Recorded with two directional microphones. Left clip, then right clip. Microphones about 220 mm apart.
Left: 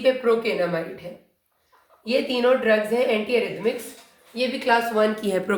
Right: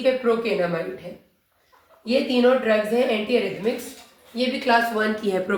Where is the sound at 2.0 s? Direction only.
40° left (ahead or behind).